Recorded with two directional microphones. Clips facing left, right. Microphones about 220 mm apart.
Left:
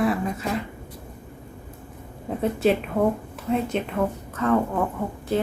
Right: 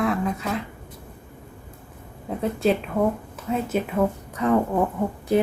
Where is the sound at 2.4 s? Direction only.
Centre (ahead or behind).